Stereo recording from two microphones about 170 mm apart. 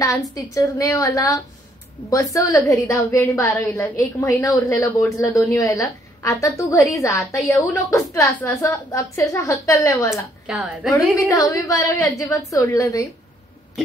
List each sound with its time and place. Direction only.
0.0 s a woman's voice: 20° left (ahead or behind)
10.4 s a woman's voice: centre (ahead or behind)
11.2 s a woman's voice: 20° left (ahead or behind)